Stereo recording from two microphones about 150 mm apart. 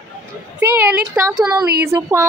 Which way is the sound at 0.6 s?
10° right (ahead or behind).